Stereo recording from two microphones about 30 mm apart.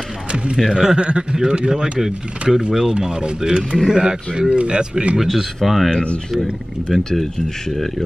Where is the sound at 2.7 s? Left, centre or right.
Right.